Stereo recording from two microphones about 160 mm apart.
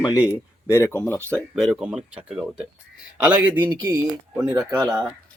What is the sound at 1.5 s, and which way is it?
A man's voice, centre (ahead or behind).